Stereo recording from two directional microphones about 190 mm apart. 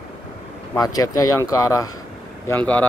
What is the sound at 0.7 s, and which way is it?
Speech, 20° left (ahead or behind).